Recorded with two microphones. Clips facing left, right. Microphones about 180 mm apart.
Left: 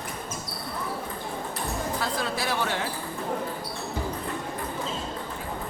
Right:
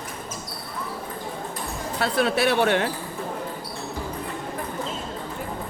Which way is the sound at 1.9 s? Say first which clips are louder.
Right 12 dB; 70° right (ahead or behind).